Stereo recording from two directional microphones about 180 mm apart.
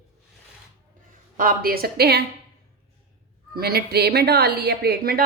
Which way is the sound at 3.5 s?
60° right (ahead or behind).